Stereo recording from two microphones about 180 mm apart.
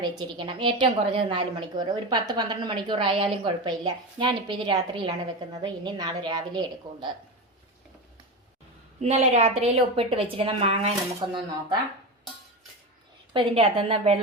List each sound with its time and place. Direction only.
0.0 s a woman's voice: 25° right (ahead or behind)
9.0 s a woman's voice: 40° right (ahead or behind)
13.3 s a woman's voice: 30° right (ahead or behind)